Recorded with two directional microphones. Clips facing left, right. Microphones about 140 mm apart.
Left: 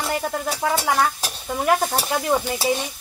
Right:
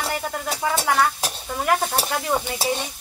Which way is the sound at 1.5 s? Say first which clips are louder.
Left 2 dB; 10° left (ahead or behind).